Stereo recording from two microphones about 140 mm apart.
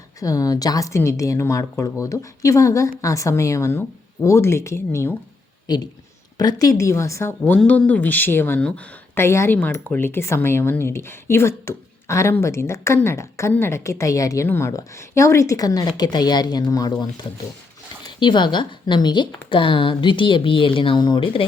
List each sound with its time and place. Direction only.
0.2 s a woman's voice: 25° left (ahead or behind)
18.2 s a woman's voice: 35° left (ahead or behind)